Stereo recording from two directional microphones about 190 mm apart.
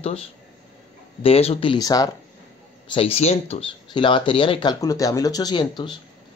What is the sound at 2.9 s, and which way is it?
Speech, 30° left (ahead or behind).